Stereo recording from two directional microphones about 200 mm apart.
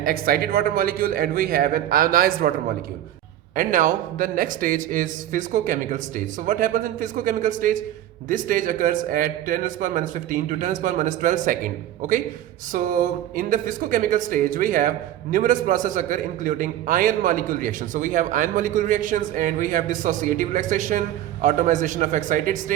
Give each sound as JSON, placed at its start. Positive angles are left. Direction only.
{"t": 0.0, "sound": "a man's voice", "side_deg": -45}
{"t": 3.5, "sound": "speech", "side_deg": -40}